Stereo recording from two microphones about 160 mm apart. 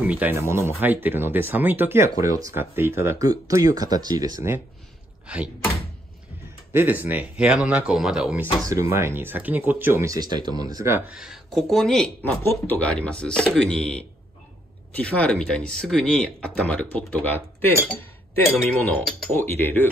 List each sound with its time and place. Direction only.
0.0 s speech: 10° right (ahead or behind)
5.2 s speech: 5° right (ahead or behind)
6.7 s speech: 10° right (ahead or behind)
8.9 s speech: 15° right (ahead or behind)
11.1 s speech: centre (ahead or behind)